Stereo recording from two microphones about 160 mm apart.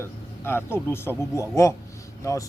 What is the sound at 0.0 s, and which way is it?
Speech, 15° left (ahead or behind).